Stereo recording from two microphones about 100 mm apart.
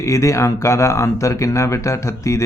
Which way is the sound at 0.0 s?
30° left (ahead or behind).